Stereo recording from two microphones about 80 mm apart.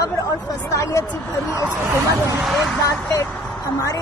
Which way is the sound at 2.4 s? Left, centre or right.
Centre.